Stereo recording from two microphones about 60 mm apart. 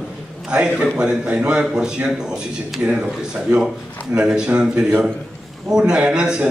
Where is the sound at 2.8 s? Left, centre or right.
Right.